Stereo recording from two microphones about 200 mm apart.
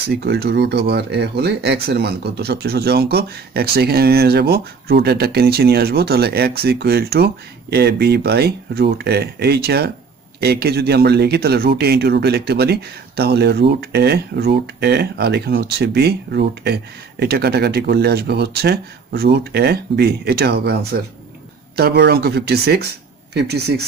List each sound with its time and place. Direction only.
0.0 s speech: 55° right (ahead or behind)